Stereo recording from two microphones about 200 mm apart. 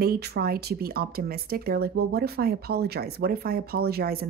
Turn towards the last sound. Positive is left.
turn(degrees=-50)  # may be behind; listen again after turning